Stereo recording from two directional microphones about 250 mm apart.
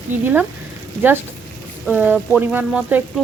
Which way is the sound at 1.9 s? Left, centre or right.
Centre.